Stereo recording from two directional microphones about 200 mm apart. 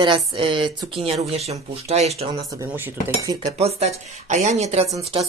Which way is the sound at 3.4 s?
30° right (ahead or behind).